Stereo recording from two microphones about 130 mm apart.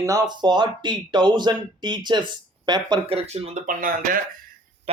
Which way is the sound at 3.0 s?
50° right (ahead or behind).